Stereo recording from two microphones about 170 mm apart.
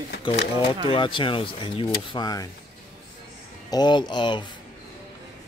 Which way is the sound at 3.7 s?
25° left (ahead or behind).